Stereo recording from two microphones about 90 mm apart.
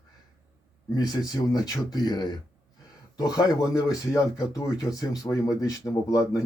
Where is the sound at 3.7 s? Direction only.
40° left (ahead or behind).